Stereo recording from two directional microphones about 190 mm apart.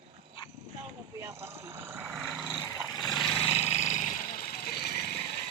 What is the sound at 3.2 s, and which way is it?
Roar, 5° left (ahead or behind).